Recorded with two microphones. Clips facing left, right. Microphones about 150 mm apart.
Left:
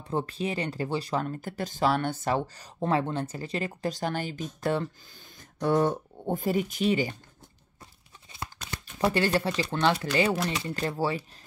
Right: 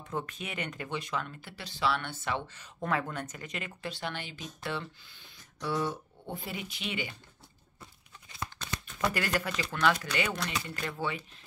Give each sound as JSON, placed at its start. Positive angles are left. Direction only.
{"t": 0.1, "sound": "speech", "side_deg": 30}
{"t": 8.7, "sound": "speech", "side_deg": 30}